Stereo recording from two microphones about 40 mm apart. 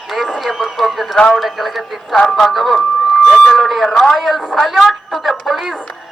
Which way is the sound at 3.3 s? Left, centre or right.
Centre.